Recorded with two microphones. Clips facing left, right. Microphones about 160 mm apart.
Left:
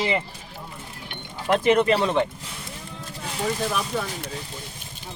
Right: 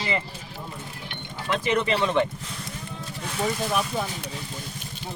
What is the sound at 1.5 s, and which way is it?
Speech, 55° left (ahead or behind).